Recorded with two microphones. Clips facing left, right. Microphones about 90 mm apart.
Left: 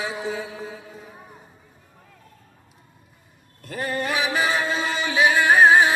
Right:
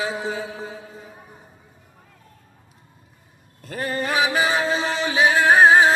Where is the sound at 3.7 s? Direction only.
40° right (ahead or behind).